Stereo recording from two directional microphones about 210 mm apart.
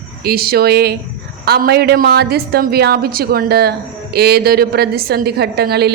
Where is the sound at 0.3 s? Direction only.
45° right (ahead or behind).